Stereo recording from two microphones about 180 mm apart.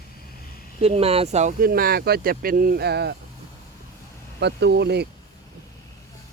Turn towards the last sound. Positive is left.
turn(degrees=-65)  # may be behind; listen again after turning